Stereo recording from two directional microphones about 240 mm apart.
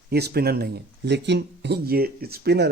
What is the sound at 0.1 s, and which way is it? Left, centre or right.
Speech, right.